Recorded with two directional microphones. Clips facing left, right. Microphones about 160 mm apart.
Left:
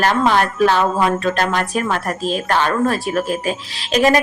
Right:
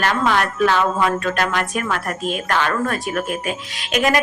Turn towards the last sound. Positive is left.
turn(degrees=30)  # may be behind; listen again after turning